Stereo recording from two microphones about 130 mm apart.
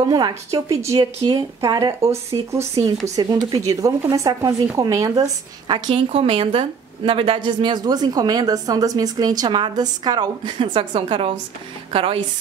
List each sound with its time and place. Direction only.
0.0 s a woman's voice: 35° right (ahead or behind)
0.3 s a woman's voice: 20° right (ahead or behind); by 12.2 s 45° right (ahead or behind)